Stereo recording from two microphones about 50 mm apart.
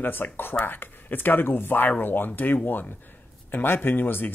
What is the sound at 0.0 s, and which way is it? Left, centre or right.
Speech, left.